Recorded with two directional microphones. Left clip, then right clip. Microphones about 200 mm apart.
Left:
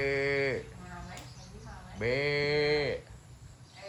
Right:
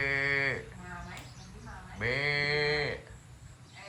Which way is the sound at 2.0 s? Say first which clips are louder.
Even; 15° left (ahead or behind).